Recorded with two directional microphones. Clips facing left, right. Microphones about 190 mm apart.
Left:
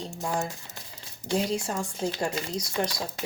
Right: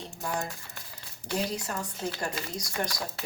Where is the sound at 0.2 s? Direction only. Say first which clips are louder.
Left 3 dB; 25° left (ahead or behind).